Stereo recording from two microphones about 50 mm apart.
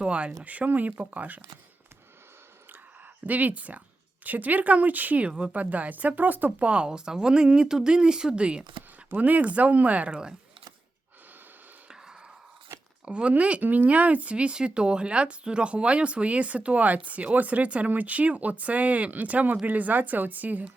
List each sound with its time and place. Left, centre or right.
0.0 s speech: right
3.2 s speech: right
6.7 s speech: centre
9.1 s speech: right
10.1 s speech: centre
13.1 s speech: right